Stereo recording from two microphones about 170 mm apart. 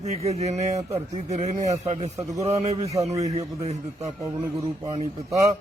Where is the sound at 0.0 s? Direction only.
40° right (ahead or behind).